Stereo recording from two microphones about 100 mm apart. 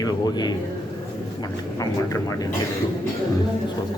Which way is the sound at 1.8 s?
40° left (ahead or behind).